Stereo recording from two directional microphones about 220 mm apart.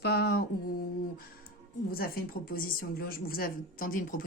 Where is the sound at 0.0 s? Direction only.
45° left (ahead or behind).